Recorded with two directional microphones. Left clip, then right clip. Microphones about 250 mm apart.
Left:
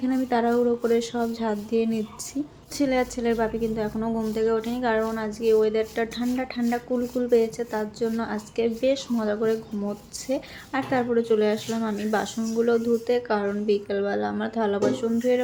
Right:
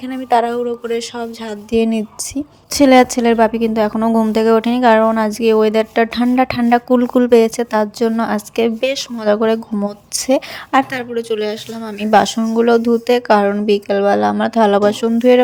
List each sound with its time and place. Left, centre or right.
0.0 s a woman's voice: right